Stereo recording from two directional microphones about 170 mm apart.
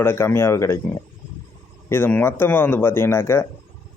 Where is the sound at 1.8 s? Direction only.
15° left (ahead or behind).